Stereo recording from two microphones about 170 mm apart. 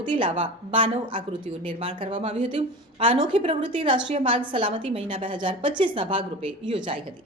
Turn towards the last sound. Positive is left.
turn(degrees=-30)  # may be behind; listen again after turning